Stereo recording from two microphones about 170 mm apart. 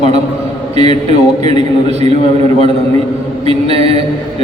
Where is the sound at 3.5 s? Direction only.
35° right (ahead or behind).